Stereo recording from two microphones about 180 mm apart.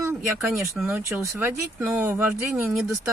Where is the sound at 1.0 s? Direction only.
15° right (ahead or behind).